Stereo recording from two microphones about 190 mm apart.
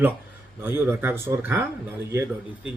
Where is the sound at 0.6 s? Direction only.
10° right (ahead or behind).